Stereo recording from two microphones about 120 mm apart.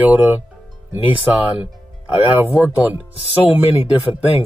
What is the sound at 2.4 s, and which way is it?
Speech, 10° right (ahead or behind).